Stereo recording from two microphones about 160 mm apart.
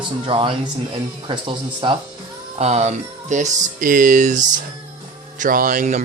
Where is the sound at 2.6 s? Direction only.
45° right (ahead or behind).